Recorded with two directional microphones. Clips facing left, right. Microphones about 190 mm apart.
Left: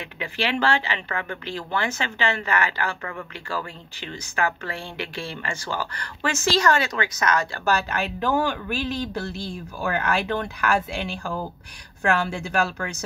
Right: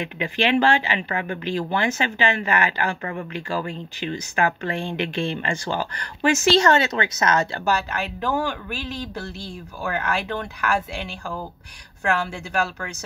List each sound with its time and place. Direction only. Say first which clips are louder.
0.0 s speech: right 5 dB; 20° right (ahead or behind)
7.9 s speech: left 1 dB; 10° right (ahead or behind)
9.8 s speech: left 1 dB; 10° right (ahead or behind)